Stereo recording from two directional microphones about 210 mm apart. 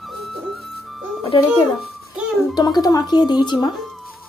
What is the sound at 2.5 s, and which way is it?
A woman's voice, 20° left (ahead or behind).